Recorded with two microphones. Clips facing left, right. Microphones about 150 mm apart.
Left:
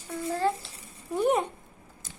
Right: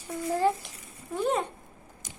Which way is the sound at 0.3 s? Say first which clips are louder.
Right 2 dB; 15° right (ahead or behind).